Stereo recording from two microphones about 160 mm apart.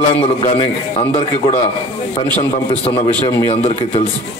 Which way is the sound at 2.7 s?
35° left (ahead or behind).